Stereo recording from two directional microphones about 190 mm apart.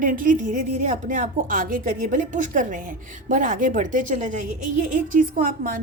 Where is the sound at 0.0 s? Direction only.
45° right (ahead or behind).